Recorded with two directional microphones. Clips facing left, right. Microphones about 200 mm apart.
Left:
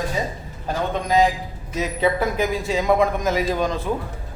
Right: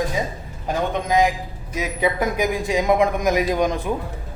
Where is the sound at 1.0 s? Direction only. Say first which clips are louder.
Left 2 dB; 15° right (ahead or behind).